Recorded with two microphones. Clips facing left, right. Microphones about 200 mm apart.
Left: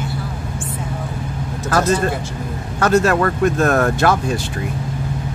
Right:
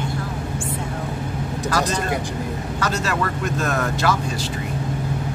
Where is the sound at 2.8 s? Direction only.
55° left (ahead or behind).